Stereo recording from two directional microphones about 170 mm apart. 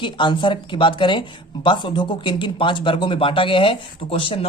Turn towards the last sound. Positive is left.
turn(degrees=30)  # may be behind; listen again after turning